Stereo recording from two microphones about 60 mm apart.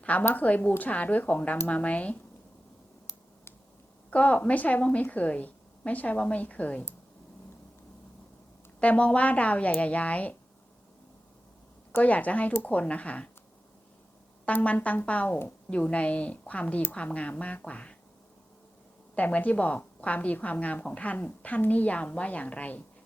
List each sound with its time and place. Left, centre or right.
0.0 s a woman's voice: left
4.1 s a woman's voice: left
8.8 s a woman's voice: left
11.9 s a woman's voice: left
14.4 s a woman's voice: left
19.1 s a woman's voice: left